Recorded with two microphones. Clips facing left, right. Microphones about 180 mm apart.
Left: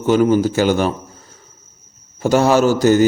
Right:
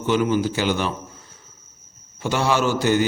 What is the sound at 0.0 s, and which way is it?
Speech, 45° left (ahead or behind).